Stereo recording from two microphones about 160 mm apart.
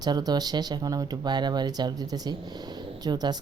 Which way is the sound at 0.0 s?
25° right (ahead or behind).